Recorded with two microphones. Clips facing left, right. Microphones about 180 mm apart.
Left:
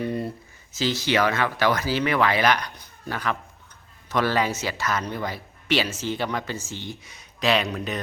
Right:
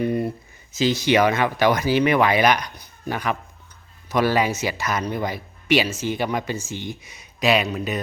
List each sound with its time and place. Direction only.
0.0 s speech: 15° right (ahead or behind)